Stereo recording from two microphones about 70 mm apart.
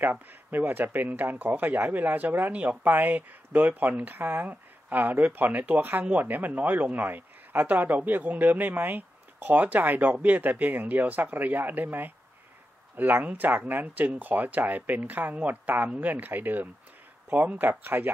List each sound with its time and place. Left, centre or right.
0.0 s speech: right